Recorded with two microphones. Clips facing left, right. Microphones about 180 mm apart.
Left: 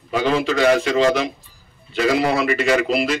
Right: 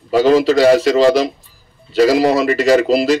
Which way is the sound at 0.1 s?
35° right (ahead or behind).